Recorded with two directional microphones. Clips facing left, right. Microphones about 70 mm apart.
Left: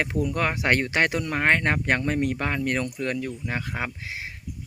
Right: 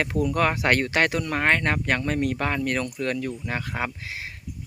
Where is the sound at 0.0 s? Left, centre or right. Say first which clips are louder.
Right 2 dB; centre.